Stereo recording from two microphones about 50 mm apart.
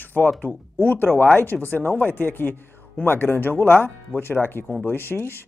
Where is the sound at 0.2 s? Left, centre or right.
Left.